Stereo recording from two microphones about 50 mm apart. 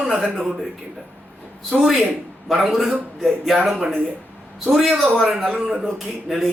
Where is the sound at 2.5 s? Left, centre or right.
Centre.